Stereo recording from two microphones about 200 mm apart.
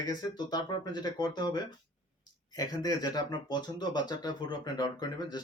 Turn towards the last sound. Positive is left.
turn(degrees=20)  # may be behind; listen again after turning